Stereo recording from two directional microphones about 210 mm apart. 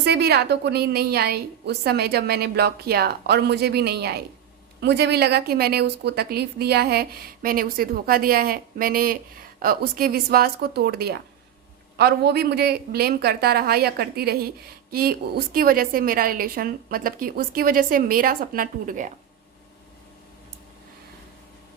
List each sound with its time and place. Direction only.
0.0 s a woman's voice: 50° right (ahead or behind)